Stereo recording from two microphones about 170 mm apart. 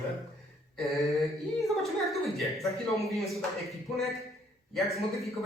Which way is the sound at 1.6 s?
Centre (ahead or behind).